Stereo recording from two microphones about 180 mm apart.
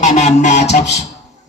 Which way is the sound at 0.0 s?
40° left (ahead or behind).